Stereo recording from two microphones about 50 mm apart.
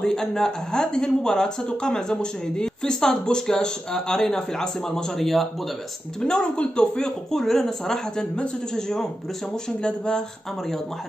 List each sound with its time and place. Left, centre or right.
0.0 s a man's voice: centre
6.2 s a man's voice: centre